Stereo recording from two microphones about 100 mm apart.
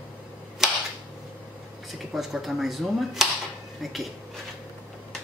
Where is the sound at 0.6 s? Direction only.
5° right (ahead or behind).